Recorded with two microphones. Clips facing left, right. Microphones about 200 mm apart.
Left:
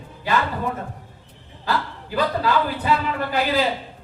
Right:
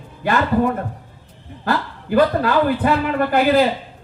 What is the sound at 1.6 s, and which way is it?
A man's voice, 55° right (ahead or behind).